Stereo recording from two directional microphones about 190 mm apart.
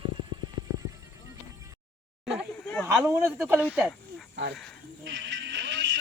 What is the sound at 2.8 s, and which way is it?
Speech, 15° right (ahead or behind).